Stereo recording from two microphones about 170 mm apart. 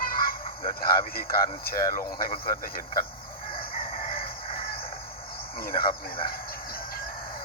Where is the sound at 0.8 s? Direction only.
60° left (ahead or behind).